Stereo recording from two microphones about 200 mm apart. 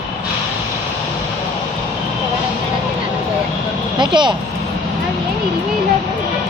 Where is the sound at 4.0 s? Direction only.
20° right (ahead or behind).